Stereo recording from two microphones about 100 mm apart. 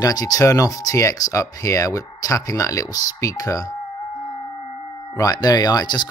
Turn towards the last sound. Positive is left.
turn(degrees=45)  # may be behind; listen again after turning